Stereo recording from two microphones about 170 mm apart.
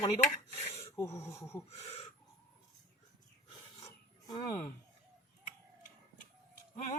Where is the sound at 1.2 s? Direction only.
15° left (ahead or behind).